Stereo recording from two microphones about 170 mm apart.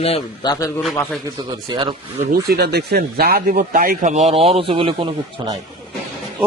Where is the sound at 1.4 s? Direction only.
25° right (ahead or behind).